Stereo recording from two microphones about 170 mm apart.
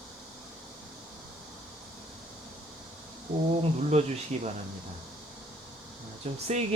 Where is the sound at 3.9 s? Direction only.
40° right (ahead or behind).